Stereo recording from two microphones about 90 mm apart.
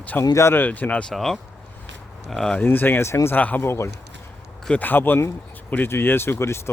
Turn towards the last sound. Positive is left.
turn(degrees=30)  # may be behind; listen again after turning